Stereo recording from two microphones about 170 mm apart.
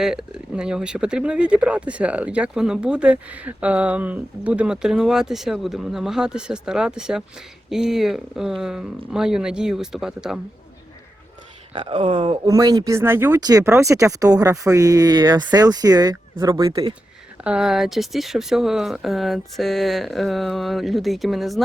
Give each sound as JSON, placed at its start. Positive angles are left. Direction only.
{"t": 0.0, "sound": "speech", "side_deg": -5}
{"t": 11.7, "sound": "speech", "side_deg": -30}
{"t": 12.5, "sound": "speech", "side_deg": -20}
{"t": 17.4, "sound": "speech", "side_deg": -5}